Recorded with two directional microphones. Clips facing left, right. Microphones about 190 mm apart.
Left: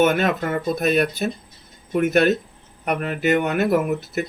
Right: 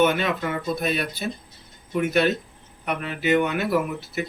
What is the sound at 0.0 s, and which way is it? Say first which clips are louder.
Speech: left 3 dB; 50° left (ahead or behind).